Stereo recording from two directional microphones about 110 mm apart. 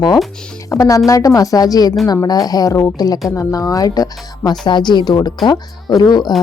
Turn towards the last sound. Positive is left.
turn(degrees=40)  # may be behind; listen again after turning